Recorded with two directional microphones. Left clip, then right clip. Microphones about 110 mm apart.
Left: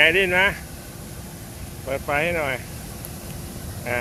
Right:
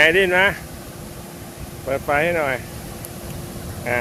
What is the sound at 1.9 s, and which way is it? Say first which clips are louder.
Speech: right 4 dB; 15° right (ahead or behind).